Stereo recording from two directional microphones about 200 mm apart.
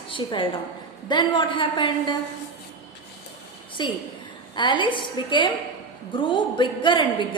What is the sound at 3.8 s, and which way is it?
A woman's voice, 25° left (ahead or behind).